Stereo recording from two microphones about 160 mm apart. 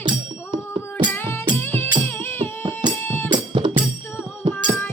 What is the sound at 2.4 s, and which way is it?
Music, 30° right (ahead or behind).